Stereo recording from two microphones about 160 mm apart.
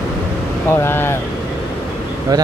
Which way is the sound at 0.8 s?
15° left (ahead or behind).